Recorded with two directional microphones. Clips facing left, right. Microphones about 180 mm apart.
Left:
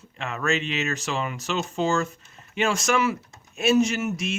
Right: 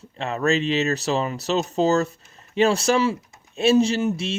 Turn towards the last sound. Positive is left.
turn(degrees=-30)  # may be behind; listen again after turning